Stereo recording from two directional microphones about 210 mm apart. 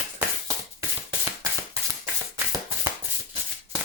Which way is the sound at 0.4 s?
15° right (ahead or behind).